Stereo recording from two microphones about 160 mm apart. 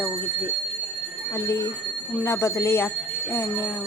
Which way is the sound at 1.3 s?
20° left (ahead or behind).